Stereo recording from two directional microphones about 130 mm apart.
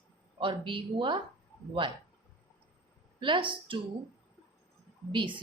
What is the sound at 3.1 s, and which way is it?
Speech, 40° right (ahead or behind).